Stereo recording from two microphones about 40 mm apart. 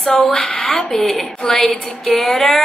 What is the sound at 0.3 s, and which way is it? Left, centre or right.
Speech, left.